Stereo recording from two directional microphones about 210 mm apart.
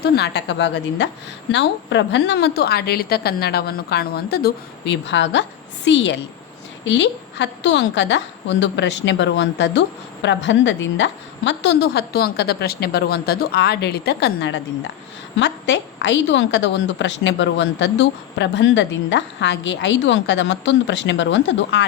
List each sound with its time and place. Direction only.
0.2 s a woman's voice: 55° left (ahead or behind)